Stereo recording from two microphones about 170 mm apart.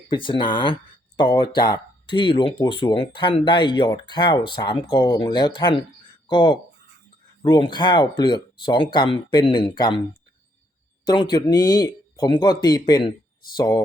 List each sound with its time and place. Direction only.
0.1 s speech: 30° left (ahead or behind)
11.0 s speech: 25° left (ahead or behind)